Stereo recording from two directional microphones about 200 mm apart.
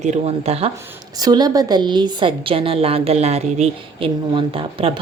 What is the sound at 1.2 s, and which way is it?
A woman's voice, 20° right (ahead or behind).